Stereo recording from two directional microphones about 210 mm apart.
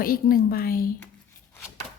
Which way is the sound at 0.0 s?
45° left (ahead or behind).